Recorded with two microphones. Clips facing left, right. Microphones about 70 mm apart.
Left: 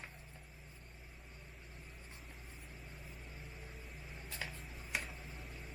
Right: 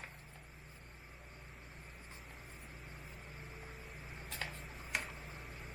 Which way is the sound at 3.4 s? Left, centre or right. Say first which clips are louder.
Right 2 dB; right.